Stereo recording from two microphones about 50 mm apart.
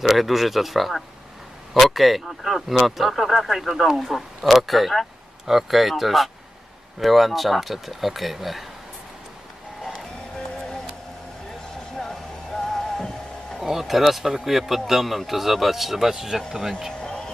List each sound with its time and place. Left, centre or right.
0.0 s speech: centre
9.8 s music: centre
11.9 s music: centre
13.6 s speech: centre
17.0 s music: centre